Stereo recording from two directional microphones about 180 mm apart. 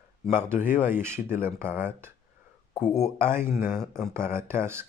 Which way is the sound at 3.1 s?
15° right (ahead or behind).